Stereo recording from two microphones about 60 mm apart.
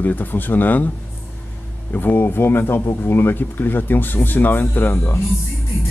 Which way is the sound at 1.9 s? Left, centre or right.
Left.